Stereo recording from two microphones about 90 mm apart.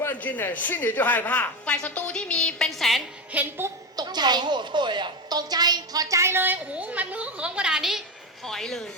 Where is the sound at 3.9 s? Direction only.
50° right (ahead or behind); by 8.9 s 5° left (ahead or behind).